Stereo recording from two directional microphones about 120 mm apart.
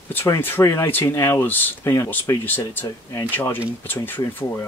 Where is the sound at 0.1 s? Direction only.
15° left (ahead or behind).